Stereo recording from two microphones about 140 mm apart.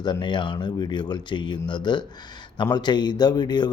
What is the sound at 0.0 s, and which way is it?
Speech, 35° left (ahead or behind).